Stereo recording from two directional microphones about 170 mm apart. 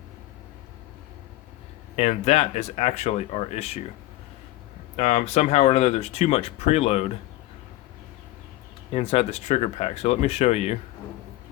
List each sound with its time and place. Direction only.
2.0 s speech: 40° left (ahead or behind)
4.9 s speech: 40° left (ahead or behind)
8.9 s speech: 35° left (ahead or behind)